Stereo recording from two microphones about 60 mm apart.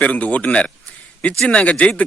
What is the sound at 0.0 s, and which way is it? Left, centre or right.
Speech, left.